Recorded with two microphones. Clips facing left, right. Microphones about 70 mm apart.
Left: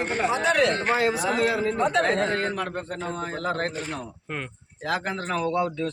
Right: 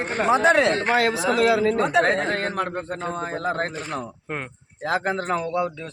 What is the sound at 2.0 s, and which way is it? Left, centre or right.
Speech, right.